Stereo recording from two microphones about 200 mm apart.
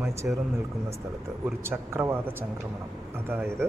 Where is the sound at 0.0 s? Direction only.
15° right (ahead or behind).